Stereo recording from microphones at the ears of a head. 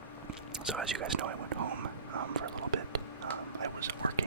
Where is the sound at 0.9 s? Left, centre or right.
Right.